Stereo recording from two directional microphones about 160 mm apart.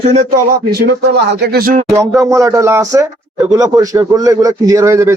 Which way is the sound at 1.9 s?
20° right (ahead or behind).